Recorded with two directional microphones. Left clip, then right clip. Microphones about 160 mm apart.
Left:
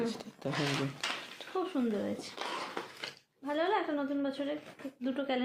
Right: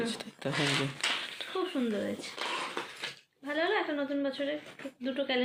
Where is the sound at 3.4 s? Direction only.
60° left (ahead or behind).